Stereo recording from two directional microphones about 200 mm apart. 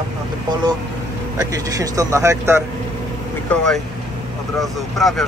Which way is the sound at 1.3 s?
15° right (ahead or behind).